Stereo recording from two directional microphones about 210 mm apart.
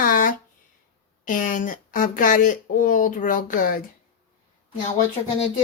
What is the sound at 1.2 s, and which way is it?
Speech, 40° left (ahead or behind).